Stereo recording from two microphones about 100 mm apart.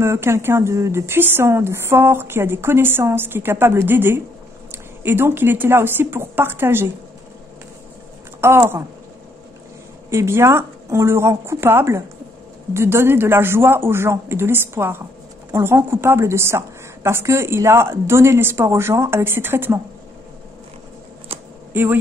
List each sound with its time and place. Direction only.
0.0 s a woman's voice: 25° right (ahead or behind)
8.4 s speech: 25° right (ahead or behind)
10.0 s a woman's voice: 25° right (ahead or behind)
21.3 s a sound: 80° right
21.7 s a woman's voice: 20° right (ahead or behind)